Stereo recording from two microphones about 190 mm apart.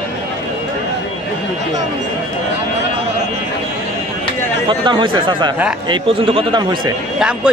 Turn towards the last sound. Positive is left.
turn(degrees=-25)  # may be behind; listen again after turning